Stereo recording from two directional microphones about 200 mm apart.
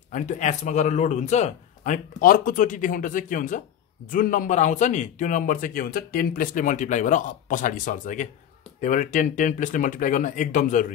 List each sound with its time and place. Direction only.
0.1 s a man's voice: 35° left (ahead or behind)